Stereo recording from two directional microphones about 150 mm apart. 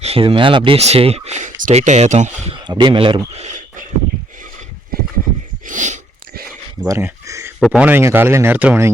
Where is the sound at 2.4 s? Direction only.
30° right (ahead or behind); by 3.8 s 55° right (ahead or behind).